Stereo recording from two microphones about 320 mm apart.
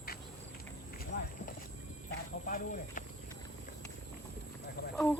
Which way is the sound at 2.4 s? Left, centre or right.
Left.